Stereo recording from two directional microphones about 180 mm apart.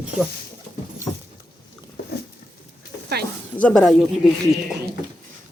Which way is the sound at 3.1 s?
65° right (ahead or behind).